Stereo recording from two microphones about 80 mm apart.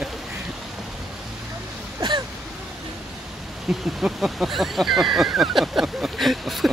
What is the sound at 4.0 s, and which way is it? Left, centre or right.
Speech, centre.